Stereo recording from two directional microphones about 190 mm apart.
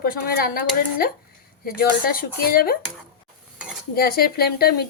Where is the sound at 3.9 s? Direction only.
55° left (ahead or behind).